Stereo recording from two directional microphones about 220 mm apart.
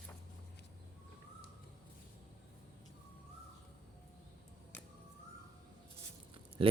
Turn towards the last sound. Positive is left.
turn(degrees=-25)  # may be behind; listen again after turning